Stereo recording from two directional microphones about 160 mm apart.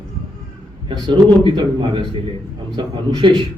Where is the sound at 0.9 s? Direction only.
30° right (ahead or behind).